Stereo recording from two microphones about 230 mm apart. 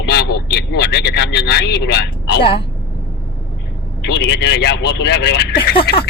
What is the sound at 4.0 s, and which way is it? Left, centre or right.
Speech, left.